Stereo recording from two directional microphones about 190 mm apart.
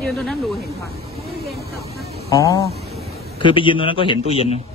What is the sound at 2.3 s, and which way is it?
A man's voice, 20° left (ahead or behind).